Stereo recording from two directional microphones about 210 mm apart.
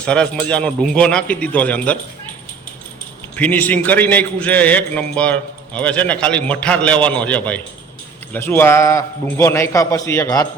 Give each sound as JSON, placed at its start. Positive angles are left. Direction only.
{"t": 0.0, "sound": "a man's voice", "side_deg": 5}
{"t": 3.3, "sound": "a man's voice", "side_deg": 5}